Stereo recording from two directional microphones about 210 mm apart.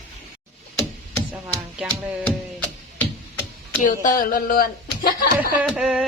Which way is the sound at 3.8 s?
40° left (ahead or behind).